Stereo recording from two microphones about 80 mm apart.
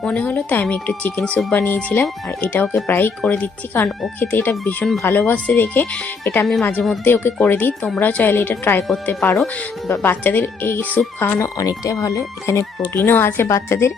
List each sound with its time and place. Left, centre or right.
0.0 s speech: centre
11.3 s a woman's voice: left